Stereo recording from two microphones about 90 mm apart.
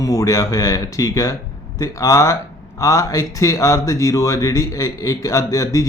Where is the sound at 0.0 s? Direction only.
40° left (ahead or behind).